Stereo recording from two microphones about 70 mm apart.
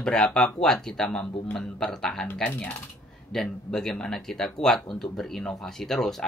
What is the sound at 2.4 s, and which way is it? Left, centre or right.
Speech, left.